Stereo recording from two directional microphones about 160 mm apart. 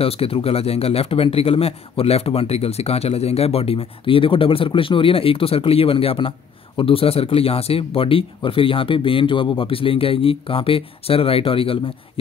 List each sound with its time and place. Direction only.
0.0 s speech: 35° left (ahead or behind)